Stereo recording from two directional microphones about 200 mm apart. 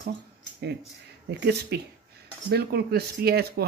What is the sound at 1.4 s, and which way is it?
Speech, 55° right (ahead or behind).